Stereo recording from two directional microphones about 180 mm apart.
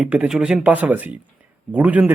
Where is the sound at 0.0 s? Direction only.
5° right (ahead or behind).